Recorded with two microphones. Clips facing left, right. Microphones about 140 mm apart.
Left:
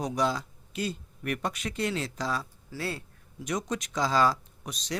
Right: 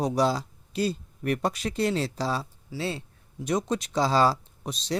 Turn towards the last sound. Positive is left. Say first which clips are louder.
# right 5 dB
turn(degrees=-30)  # may be behind; listen again after turning